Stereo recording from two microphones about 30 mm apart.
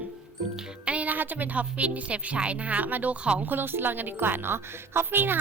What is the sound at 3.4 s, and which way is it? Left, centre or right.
Speech, right.